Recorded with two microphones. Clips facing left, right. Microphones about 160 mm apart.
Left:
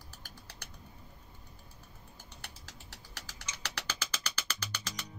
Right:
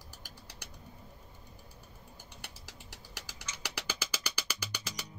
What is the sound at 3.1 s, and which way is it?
Music, 10° right (ahead or behind).